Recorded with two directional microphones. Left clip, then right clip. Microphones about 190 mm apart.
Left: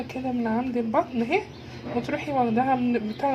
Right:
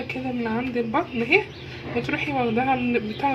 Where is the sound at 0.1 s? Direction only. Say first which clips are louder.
Even; 5° left (ahead or behind).